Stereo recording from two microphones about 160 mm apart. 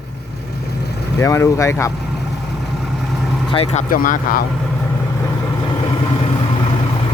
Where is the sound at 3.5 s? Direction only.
40° left (ahead or behind).